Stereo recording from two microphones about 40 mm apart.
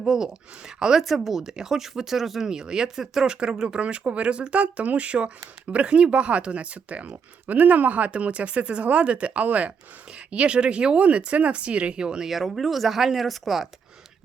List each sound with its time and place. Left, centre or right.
0.0 s speech: centre
1.0 s speech: centre
2.5 s speech: centre; by 9.7 s right
10.1 s speech: right
12.3 s speech: centre